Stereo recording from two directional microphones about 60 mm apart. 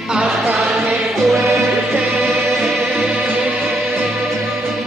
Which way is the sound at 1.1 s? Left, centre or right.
Centre.